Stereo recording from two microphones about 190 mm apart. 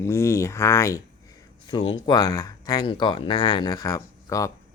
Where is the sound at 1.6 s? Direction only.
25° left (ahead or behind).